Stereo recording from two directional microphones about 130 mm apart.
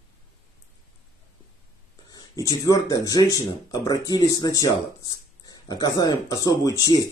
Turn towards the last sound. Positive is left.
turn(degrees=30)  # may be behind; listen again after turning